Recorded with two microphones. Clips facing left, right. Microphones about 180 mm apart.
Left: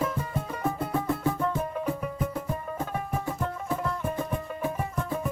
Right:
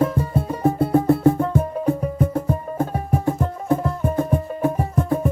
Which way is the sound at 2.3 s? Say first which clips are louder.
Right 8 dB; 50° right (ahead or behind).